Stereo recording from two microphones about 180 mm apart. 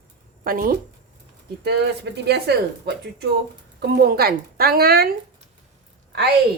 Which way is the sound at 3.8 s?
60° right (ahead or behind).